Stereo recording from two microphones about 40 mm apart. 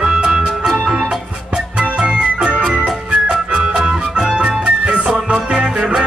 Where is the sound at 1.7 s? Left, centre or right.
Right.